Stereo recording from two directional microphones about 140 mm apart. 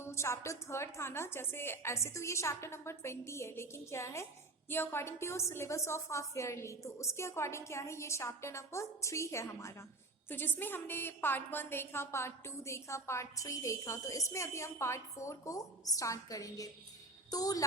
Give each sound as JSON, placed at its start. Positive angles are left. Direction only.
{"t": 0.0, "sound": "a woman's voice", "side_deg": 20}